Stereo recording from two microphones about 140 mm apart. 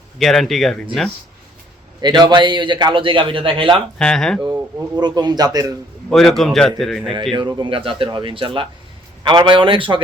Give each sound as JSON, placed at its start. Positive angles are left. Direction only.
{"t": 0.2, "sound": "a man's voice", "side_deg": 0}
{"t": 2.0, "sound": "a man's voice", "side_deg": -30}
{"t": 3.9, "sound": "a man's voice", "side_deg": 5}
{"t": 4.9, "sound": "speech", "side_deg": -30}
{"t": 6.1, "sound": "a man's voice", "side_deg": 0}
{"t": 7.3, "sound": "a man's voice", "side_deg": -35}